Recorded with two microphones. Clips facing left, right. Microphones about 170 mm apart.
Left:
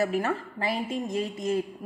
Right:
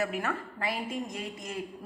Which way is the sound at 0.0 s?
35° left (ahead or behind).